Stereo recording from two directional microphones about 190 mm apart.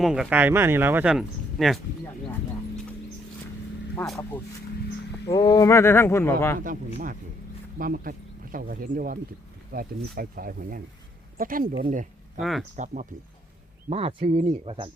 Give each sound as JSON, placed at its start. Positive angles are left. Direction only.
{"t": 0.0, "sound": "speech", "side_deg": -5}
{"t": 5.3, "sound": "speech", "side_deg": 20}
{"t": 6.6, "sound": "speech", "side_deg": -45}
{"t": 12.4, "sound": "speech", "side_deg": 0}
{"t": 12.7, "sound": "speech", "side_deg": -40}
{"t": 13.9, "sound": "speech", "side_deg": -30}